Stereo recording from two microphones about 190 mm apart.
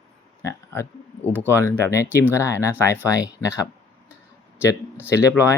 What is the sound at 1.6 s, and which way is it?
Speech, 15° left (ahead or behind).